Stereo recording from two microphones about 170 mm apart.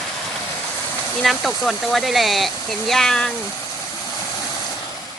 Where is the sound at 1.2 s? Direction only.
Centre (ahead or behind).